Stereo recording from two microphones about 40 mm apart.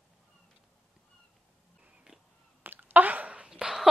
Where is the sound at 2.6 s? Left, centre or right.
Right.